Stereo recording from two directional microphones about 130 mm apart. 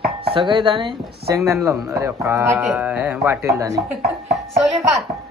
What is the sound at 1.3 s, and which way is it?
Speech, 20° right (ahead or behind).